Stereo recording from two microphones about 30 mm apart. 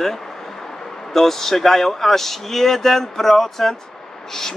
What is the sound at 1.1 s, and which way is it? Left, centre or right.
Speech, centre.